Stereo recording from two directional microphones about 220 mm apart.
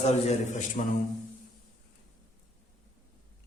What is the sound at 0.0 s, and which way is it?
Speech, 30° left (ahead or behind).